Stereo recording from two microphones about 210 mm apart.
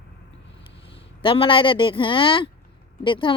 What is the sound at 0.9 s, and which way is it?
Speech, 25° left (ahead or behind).